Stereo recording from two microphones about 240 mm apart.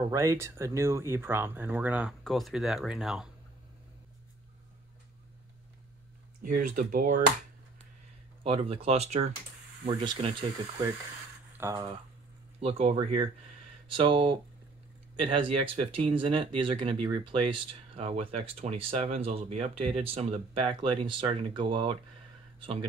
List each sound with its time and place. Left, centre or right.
0.0 s speech: centre
6.6 s speech: right
8.5 s speech: right
11.5 s speech: centre
12.5 s speech: right